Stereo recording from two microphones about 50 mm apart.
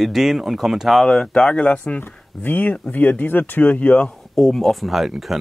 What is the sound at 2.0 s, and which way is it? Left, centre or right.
Speech, left.